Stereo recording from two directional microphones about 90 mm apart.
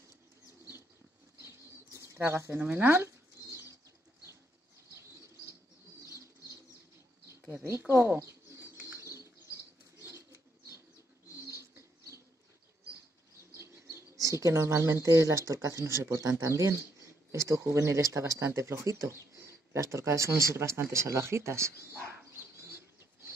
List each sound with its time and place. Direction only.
1.9 s bird: 35° right (ahead or behind)
2.6 s speech: 20° right (ahead or behind)
6.0 s bird flight: 40° left (ahead or behind)
7.9 s bird: 25° right (ahead or behind)
8.9 s bird flight: 30° right (ahead or behind)
9.9 s rodents: 30° right (ahead or behind)
13.6 s chirp: 35° right (ahead or behind)
14.2 s speech: 35° right (ahead or behind)
22.4 s bird: 25° right (ahead or behind)